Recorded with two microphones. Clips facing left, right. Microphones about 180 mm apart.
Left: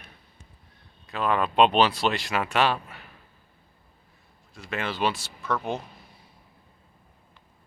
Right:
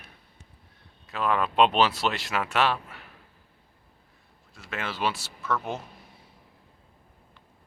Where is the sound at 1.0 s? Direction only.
5° right (ahead or behind).